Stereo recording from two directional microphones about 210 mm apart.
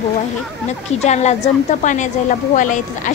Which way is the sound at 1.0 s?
30° left (ahead or behind).